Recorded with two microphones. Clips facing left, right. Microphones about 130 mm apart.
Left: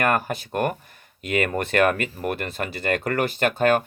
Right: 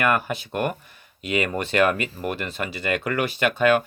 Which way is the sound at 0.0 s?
45° left (ahead or behind).